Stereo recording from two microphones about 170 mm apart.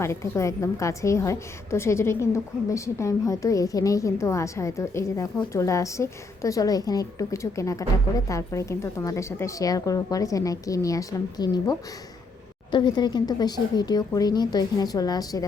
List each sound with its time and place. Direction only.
0.0 s a woman's voice: 15° left (ahead or behind)